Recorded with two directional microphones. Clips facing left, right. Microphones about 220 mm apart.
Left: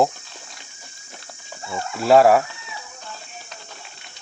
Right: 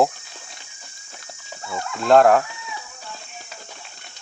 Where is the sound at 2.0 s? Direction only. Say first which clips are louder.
Even; 5° left (ahead or behind).